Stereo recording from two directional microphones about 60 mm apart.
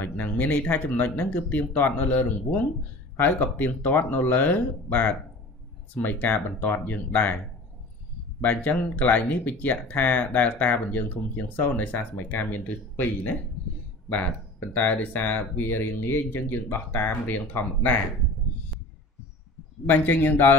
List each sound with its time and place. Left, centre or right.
0.0 s speech: left
8.4 s speech: left
19.9 s speech: left